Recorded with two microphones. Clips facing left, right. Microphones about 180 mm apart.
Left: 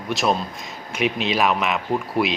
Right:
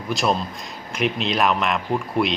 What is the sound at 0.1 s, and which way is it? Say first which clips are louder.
Speech: even; centre (ahead or behind).